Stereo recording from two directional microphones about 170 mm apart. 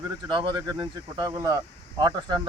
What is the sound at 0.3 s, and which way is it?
Speech, 25° right (ahead or behind).